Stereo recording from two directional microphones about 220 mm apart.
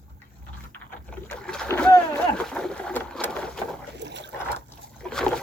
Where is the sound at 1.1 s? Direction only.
5° left (ahead or behind).